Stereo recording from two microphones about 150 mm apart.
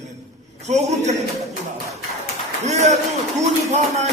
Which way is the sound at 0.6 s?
50° right (ahead or behind).